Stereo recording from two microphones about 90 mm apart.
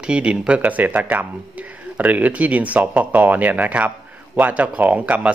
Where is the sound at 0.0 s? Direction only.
10° right (ahead or behind).